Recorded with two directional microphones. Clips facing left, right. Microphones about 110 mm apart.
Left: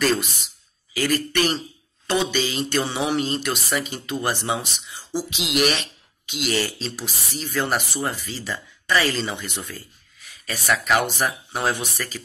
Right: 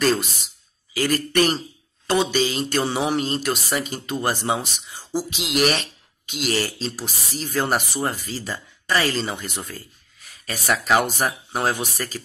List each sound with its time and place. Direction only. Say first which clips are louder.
0.0 s speech: right 1 dB; 30° right (ahead or behind)